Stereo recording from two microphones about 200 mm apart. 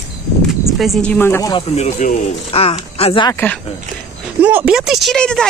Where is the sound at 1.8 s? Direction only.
35° left (ahead or behind).